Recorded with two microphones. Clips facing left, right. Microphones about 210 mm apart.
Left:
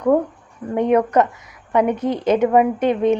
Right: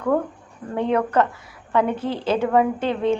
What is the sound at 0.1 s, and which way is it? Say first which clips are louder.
A woman's voice: left 4 dB; 15° left (ahead or behind).